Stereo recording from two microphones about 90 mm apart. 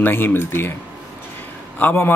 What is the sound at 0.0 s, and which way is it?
Speech, 25° left (ahead or behind).